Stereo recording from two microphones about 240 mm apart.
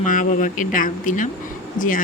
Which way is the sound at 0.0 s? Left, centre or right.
Left.